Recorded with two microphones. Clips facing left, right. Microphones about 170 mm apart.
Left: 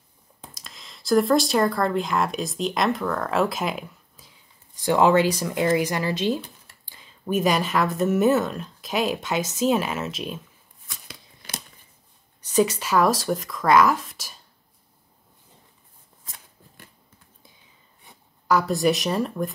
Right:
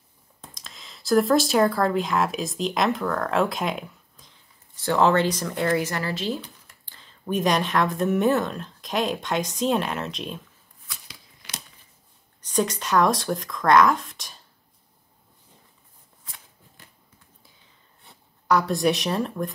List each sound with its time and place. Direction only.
0.6 s speech: centre (ahead or behind)
12.4 s speech: 10° left (ahead or behind)
16.3 s shuffling cards: 45° left (ahead or behind)
18.5 s speech: centre (ahead or behind)